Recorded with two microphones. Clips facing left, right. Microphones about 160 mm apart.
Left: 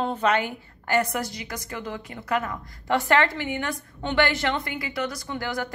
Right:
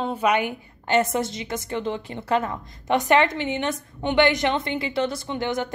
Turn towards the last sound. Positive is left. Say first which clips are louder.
# right 4 dB
turn(degrees=-20)  # may be behind; listen again after turning